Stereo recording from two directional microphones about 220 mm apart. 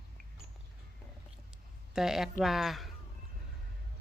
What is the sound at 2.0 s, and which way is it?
Speech, centre (ahead or behind).